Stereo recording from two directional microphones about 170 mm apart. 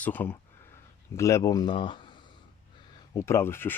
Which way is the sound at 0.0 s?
10° left (ahead or behind).